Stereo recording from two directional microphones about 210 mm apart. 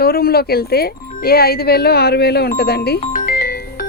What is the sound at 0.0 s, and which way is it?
Speech, 45° left (ahead or behind).